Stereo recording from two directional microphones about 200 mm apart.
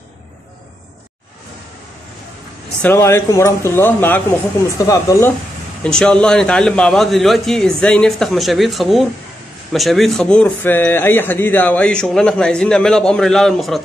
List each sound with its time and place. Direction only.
2.8 s speech: 10° left (ahead or behind)
5.9 s speech: 5° left (ahead or behind)